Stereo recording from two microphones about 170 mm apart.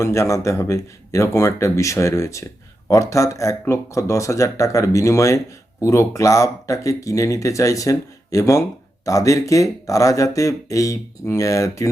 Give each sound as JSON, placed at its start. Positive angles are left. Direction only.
{"t": 0.0, "sound": "speech", "side_deg": 15}